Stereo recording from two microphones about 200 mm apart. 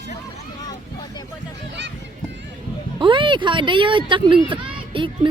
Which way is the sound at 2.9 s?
25° right (ahead or behind).